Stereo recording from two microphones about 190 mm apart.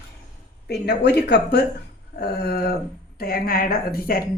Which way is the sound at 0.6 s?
60° left (ahead or behind).